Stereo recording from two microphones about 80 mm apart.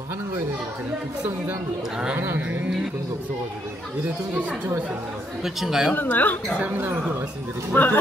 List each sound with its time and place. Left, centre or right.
2.1 s speech: right
4.0 s speech: centre
5.4 s speech: centre
5.9 s speech: left
7.7 s speech: left